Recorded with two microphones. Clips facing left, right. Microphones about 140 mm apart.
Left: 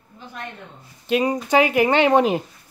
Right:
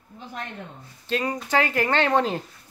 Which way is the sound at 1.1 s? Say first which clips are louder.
Left 6 dB; 15° left (ahead or behind).